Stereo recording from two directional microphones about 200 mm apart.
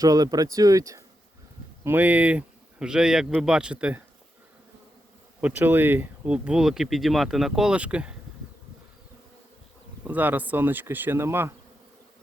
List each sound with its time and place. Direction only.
0.0 s speech: 20° right (ahead or behind)
5.4 s speech: 10° right (ahead or behind)
10.0 s speech: 10° right (ahead or behind)